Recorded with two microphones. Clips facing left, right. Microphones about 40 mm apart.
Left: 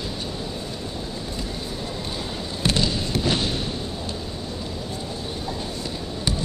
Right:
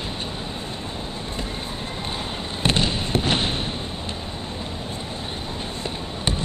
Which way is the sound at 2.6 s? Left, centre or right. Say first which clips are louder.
Right 1 dB; right.